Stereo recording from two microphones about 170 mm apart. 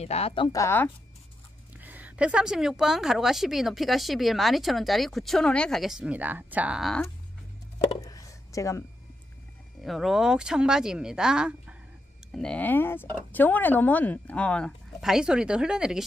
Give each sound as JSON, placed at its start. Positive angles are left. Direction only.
{"t": 0.0, "sound": "speech", "side_deg": 35}
{"t": 0.6, "sound": "speech", "side_deg": 15}
{"t": 1.8, "sound": "a woman's voice", "side_deg": -10}
{"t": 8.0, "sound": "a sound", "side_deg": 20}
{"t": 9.8, "sound": "a woman's voice", "side_deg": 0}